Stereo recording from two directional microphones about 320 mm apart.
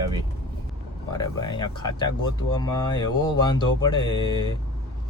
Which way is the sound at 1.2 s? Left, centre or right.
Centre.